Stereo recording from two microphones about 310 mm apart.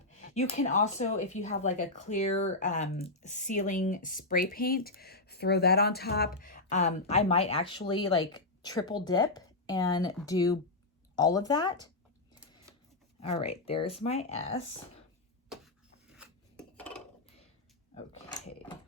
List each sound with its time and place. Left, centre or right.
0.3 s speech: left
13.1 s speech: centre
15.4 s dishes: centre